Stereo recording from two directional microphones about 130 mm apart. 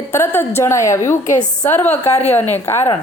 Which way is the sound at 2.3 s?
15° left (ahead or behind).